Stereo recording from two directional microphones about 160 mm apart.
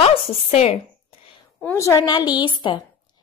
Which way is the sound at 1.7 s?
20° left (ahead or behind).